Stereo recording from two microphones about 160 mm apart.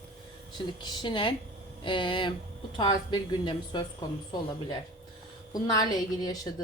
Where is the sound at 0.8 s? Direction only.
30° left (ahead or behind).